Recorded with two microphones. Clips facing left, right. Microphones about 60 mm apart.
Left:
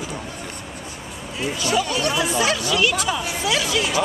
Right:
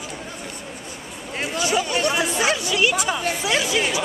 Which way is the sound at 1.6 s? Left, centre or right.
Centre.